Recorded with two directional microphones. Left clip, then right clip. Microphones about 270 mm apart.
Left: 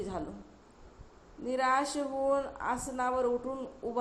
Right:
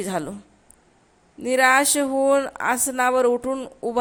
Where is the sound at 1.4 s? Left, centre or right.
Right.